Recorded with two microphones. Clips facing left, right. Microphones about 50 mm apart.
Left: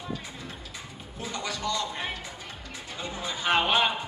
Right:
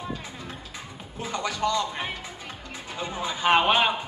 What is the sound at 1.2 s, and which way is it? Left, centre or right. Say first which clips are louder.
Speech: right 5 dB; right.